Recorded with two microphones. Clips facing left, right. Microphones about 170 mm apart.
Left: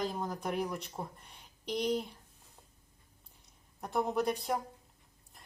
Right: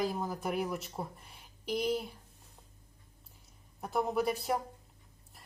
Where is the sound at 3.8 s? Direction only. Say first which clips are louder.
Even; centre (ahead or behind).